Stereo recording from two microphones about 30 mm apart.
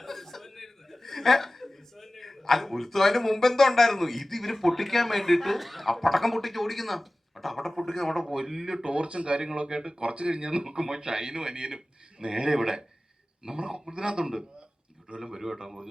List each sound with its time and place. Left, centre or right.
0.0 s speech: centre
8.2 s speech: centre
15.1 s speech: right